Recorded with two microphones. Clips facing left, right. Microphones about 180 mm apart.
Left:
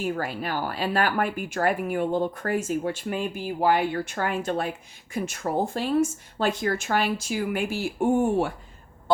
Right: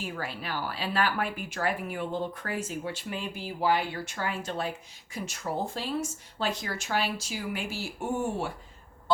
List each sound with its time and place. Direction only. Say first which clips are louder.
0.0 s speech: left 8 dB; 45° left (ahead or behind)
9.1 s goose: left 4 dB; 50° left (ahead or behind)